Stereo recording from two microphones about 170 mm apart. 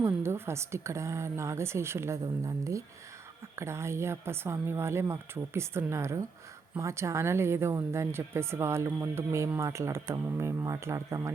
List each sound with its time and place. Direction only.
0.0 s speech: 15° right (ahead or behind)